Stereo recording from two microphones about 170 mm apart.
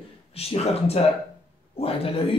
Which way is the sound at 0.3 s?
35° left (ahead or behind).